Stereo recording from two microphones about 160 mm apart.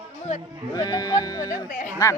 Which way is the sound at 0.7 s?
25° left (ahead or behind).